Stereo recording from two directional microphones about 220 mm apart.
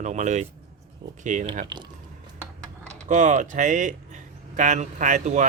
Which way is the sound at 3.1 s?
35° right (ahead or behind).